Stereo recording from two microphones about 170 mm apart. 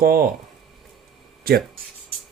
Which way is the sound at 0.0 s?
60° right (ahead or behind).